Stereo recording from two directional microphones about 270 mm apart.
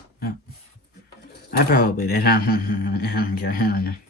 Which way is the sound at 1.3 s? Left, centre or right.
Left.